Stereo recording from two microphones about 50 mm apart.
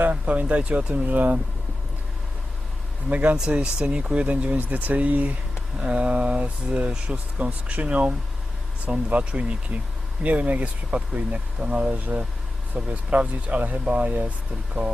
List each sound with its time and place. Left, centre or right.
0.0 s speech: right
3.1 s speech: right
3.3 s speech: centre